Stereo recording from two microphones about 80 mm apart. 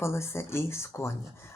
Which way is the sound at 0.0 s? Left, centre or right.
Left.